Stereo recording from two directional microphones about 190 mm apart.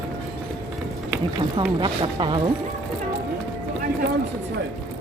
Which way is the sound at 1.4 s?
25° right (ahead or behind).